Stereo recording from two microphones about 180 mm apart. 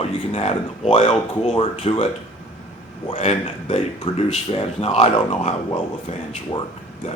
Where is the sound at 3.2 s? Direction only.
40° left (ahead or behind).